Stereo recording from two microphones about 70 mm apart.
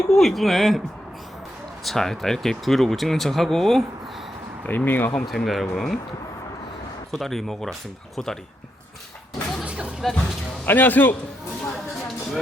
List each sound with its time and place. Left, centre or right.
0.1 s speech: centre
1.8 s speech: centre
4.6 s speech: left
5.2 s speech: centre
7.1 s speech: centre
10.0 s speech: centre
10.7 s speech: left